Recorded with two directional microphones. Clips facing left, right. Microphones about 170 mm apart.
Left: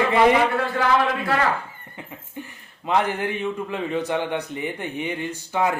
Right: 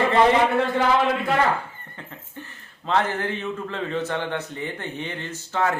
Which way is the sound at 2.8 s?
15° left (ahead or behind).